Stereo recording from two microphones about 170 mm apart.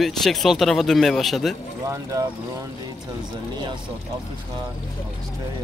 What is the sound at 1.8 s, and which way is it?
Speech, 20° right (ahead or behind).